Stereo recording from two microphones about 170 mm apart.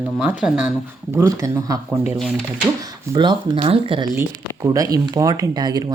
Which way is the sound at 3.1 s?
30° right (ahead or behind).